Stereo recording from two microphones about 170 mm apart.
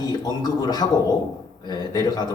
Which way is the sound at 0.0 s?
25° left (ahead or behind).